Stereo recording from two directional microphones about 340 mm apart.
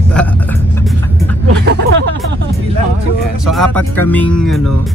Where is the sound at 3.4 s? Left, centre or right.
Centre.